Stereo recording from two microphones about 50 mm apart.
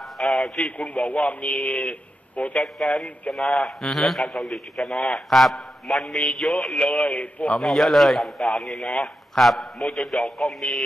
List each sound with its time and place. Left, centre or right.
0.0 s radio: centre
0.7 s a man's voice: left
2.6 s a man's voice: centre
6.7 s a man's voice: left
7.6 s a man's voice: centre